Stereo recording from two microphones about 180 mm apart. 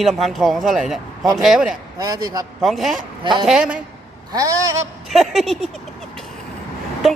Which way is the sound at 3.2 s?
25° right (ahead or behind).